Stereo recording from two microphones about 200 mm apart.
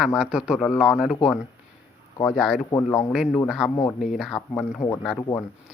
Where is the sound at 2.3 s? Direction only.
Centre (ahead or behind).